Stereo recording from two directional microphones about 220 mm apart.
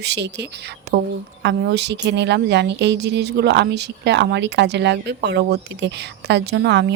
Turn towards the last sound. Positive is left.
turn(degrees=-50)  # may be behind; listen again after turning